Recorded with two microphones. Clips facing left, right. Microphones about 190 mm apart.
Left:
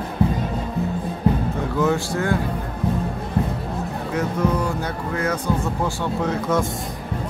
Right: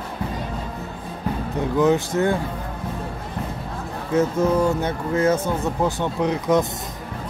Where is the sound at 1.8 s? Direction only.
20° right (ahead or behind).